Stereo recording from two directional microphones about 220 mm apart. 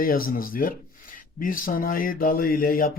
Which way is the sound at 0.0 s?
40° left (ahead or behind).